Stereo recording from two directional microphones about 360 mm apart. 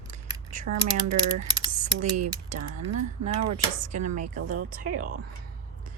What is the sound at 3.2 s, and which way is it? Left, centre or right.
Speech, centre.